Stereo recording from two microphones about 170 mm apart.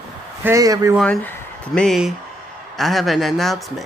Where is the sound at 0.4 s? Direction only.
20° right (ahead or behind).